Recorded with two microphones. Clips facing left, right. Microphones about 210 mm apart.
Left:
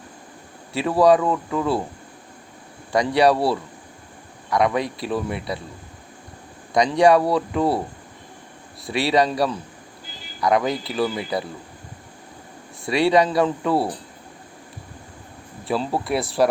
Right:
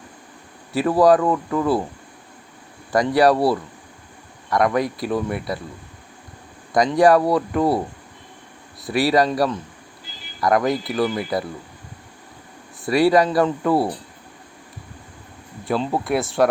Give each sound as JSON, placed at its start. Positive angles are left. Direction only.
{"t": 0.9, "sound": "speech", "side_deg": 0}
{"t": 2.9, "sound": "speech", "side_deg": 0}
{"t": 6.7, "sound": "speech", "side_deg": 0}
{"t": 8.9, "sound": "speech", "side_deg": 25}
{"t": 9.1, "sound": "speech", "side_deg": 0}
{"t": 12.9, "sound": "speech", "side_deg": 25}
{"t": 13.1, "sound": "speech", "side_deg": 0}
{"t": 15.6, "sound": "speech", "side_deg": 0}